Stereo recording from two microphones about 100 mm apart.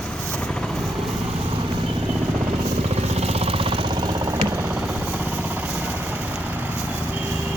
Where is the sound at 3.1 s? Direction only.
90° right; by 4.3 s 45° right (ahead or behind).